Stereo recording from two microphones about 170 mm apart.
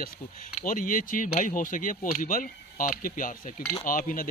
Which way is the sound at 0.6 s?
50° left (ahead or behind).